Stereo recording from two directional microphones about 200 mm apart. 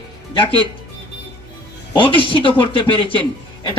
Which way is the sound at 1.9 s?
25° left (ahead or behind).